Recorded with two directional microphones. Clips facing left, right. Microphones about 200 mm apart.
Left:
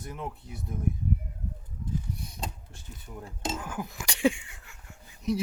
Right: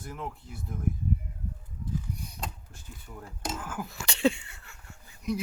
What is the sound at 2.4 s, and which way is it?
Speech, 25° left (ahead or behind).